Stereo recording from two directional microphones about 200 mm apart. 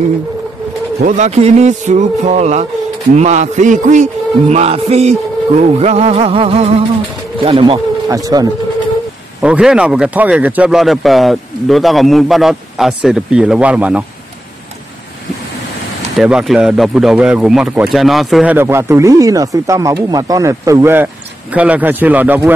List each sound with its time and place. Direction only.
0.9 s a man's voice: 35° right (ahead or behind); by 8.5 s 20° right (ahead or behind)
9.4 s speech: 5° right (ahead or behind)
16.2 s speech: centre (ahead or behind)